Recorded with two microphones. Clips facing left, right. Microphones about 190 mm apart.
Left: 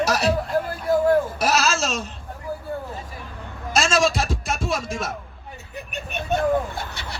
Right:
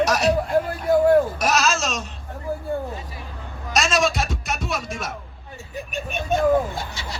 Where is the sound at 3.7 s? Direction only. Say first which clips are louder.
Even; 30° left (ahead or behind).